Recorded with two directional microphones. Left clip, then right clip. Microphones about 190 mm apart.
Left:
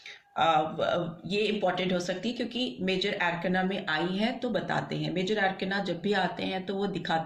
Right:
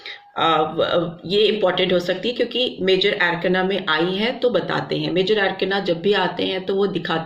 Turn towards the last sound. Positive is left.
turn(degrees=-35)  # may be behind; listen again after turning